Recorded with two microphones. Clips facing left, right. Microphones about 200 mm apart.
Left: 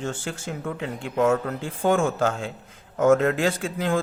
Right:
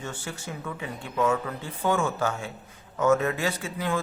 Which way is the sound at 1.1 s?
50° left (ahead or behind).